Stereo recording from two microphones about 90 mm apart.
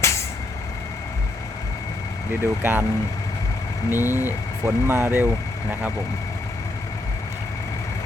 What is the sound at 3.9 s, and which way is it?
Speech, 25° right (ahead or behind).